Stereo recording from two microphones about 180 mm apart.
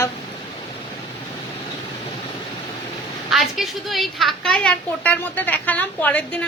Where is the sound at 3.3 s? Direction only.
Centre (ahead or behind).